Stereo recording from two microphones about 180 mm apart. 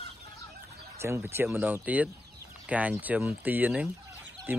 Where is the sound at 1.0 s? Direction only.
15° right (ahead or behind).